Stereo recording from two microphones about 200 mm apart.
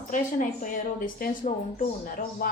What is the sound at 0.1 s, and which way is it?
A woman's voice, 40° left (ahead or behind).